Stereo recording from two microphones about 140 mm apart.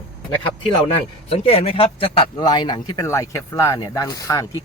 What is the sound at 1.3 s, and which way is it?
Speech, 45° left (ahead or behind).